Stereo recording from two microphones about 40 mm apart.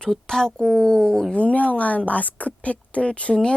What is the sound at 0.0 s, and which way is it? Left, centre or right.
Speech, centre.